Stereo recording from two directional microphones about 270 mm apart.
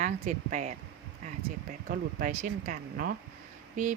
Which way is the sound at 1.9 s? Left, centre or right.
Right.